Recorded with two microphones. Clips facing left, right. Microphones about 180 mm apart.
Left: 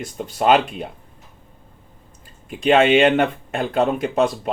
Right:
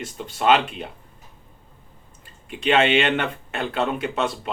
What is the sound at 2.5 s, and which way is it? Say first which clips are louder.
Speech: left 4 dB; 40° left (ahead or behind).